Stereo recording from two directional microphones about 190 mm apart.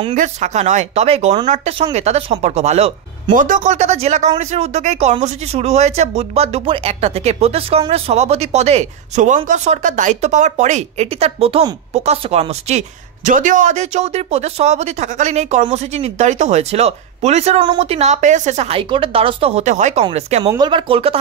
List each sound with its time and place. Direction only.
0.1 s speech: 40° right (ahead or behind)
20.4 s speech: 20° right (ahead or behind)